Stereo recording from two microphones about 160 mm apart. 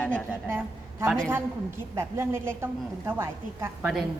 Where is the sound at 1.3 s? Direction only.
15° right (ahead or behind).